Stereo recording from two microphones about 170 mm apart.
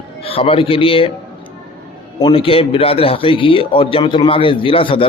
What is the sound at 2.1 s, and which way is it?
A man's voice, 30° left (ahead or behind).